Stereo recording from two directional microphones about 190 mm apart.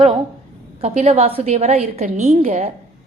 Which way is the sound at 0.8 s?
35° right (ahead or behind).